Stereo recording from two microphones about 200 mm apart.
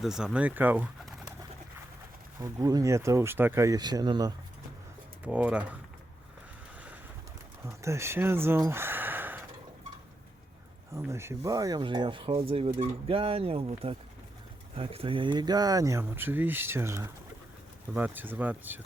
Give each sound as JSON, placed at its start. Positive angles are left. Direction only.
{"t": 0.0, "sound": "speech", "side_deg": 0}
{"t": 2.4, "sound": "speech", "side_deg": -15}
{"t": 5.2, "sound": "speech", "side_deg": -5}
{"t": 7.6, "sound": "speech", "side_deg": -15}
{"t": 10.9, "sound": "speech", "side_deg": -15}